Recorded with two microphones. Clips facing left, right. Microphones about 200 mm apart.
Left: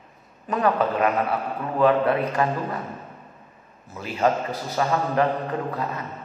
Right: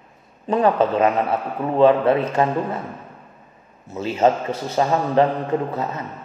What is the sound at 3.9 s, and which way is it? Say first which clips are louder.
A man's voice: right 5 dB; 25° right (ahead or behind).